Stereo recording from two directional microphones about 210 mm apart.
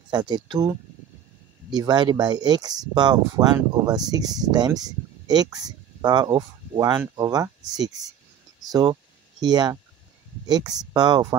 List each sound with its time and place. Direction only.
0.1 s speech: 20° right (ahead or behind)